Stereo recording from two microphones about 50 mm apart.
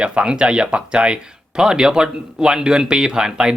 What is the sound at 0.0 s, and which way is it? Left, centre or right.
Speech, centre.